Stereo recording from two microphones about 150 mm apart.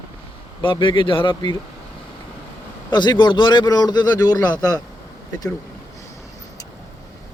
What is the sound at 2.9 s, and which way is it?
A man's voice, 30° left (ahead or behind).